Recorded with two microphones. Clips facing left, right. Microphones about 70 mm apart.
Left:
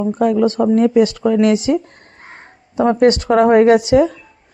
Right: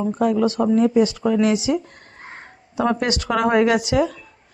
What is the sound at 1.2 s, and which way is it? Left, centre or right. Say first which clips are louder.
Speech: left 5 dB; left.